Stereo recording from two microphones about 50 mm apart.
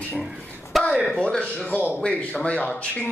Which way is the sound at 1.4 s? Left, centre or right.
Left.